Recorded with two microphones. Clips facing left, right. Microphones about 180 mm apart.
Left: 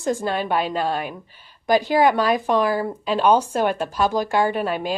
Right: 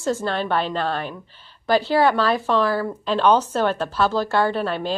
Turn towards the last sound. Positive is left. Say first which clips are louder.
# even
turn(degrees=10)  # may be behind; listen again after turning